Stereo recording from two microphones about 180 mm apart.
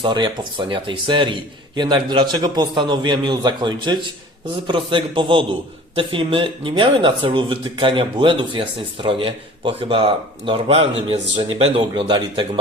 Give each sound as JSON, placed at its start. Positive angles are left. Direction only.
{"t": 0.0, "sound": "a man's voice", "side_deg": -25}